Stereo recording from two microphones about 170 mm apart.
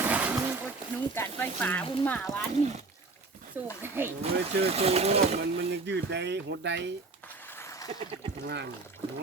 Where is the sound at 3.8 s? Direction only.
15° right (ahead or behind).